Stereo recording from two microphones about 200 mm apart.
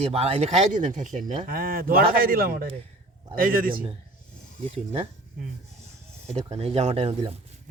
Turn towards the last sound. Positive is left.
turn(degrees=-30)  # may be behind; listen again after turning